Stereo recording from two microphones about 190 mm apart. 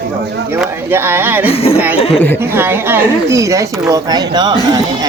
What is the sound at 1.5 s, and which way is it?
Speech, 30° left (ahead or behind).